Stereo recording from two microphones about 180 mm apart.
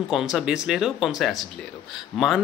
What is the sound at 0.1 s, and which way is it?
A man's voice, centre (ahead or behind).